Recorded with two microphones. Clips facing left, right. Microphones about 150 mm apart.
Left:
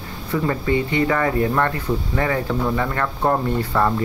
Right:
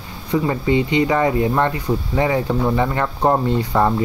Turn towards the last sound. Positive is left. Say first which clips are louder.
# right 2 dB
turn(degrees=-20)  # may be behind; listen again after turning